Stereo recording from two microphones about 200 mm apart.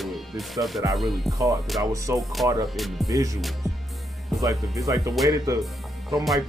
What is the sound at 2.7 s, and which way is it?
Speech, centre (ahead or behind).